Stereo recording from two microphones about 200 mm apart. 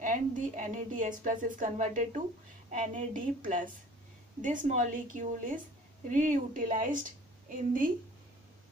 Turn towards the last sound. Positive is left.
turn(degrees=-40)  # may be behind; listen again after turning